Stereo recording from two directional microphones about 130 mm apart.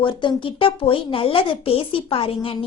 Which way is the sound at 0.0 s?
40° left (ahead or behind).